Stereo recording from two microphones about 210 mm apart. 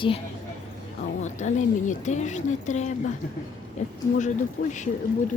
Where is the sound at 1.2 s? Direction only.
35° left (ahead or behind).